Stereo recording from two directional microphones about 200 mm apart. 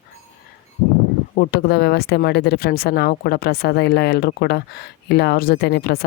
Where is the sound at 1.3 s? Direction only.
50° left (ahead or behind).